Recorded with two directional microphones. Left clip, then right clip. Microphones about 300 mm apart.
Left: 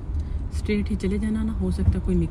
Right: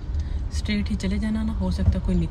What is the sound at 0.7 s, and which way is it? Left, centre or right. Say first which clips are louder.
Speech: left 2 dB; right.